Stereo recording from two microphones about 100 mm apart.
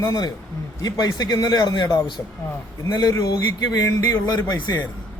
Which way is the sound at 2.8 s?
35° left (ahead or behind).